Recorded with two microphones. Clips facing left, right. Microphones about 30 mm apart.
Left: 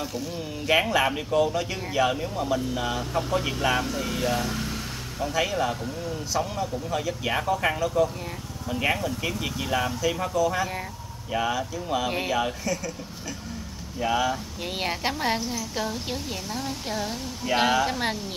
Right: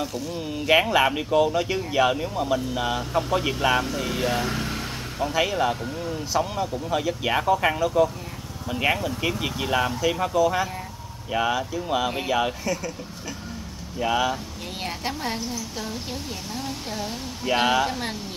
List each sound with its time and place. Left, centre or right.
0.0 s speech: centre
0.4 s speech: centre
13.9 s speech: centre
14.8 s a woman's voice: centre
16.5 s speech: centre
17.4 s speech: centre
17.8 s a woman's voice: centre